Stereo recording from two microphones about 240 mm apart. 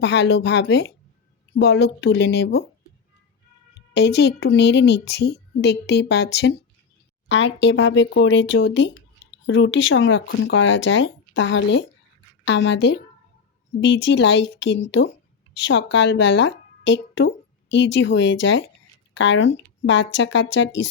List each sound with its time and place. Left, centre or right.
0.0 s speech: left
3.8 s a woman's voice: left